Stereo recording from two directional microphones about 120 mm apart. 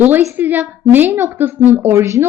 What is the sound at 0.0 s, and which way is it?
A woman's voice, 20° right (ahead or behind).